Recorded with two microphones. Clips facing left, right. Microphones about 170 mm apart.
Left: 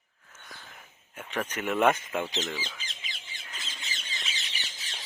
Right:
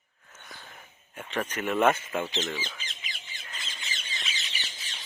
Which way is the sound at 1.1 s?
5° left (ahead or behind).